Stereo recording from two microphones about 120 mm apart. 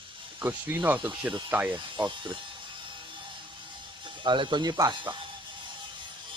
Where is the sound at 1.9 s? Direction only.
40° right (ahead or behind).